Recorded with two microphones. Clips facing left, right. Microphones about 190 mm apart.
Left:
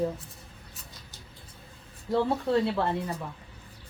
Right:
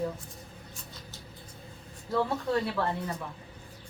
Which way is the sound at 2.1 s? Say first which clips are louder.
Left 3 dB; 25° left (ahead or behind).